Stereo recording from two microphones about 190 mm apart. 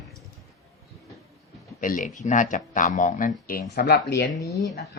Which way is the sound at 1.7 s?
45° left (ahead or behind).